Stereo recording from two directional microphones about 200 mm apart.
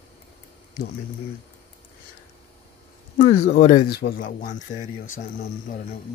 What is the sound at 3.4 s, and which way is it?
Speech, 40° left (ahead or behind).